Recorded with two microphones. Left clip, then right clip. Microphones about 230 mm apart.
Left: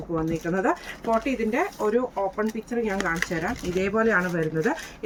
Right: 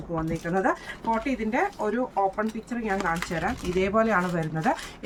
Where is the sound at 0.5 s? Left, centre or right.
Centre.